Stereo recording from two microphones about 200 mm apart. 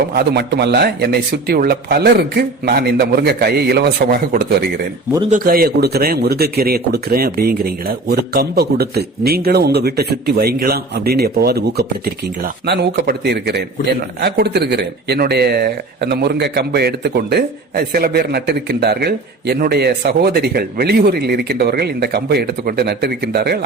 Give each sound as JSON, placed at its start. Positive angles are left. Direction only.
{"t": 0.1, "sound": "speech", "side_deg": -50}